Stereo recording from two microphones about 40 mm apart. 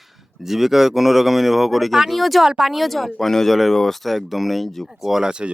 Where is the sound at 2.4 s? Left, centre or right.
Centre.